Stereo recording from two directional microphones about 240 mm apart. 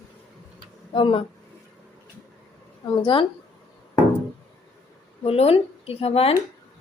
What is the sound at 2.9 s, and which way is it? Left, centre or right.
Speech, centre.